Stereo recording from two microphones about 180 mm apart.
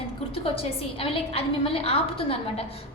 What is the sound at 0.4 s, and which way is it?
A woman's voice, 30° left (ahead or behind).